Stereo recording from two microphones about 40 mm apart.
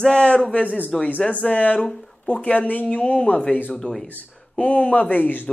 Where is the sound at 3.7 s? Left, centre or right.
Centre.